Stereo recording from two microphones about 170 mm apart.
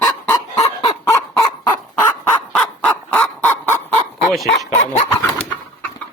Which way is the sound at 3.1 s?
10° left (ahead or behind).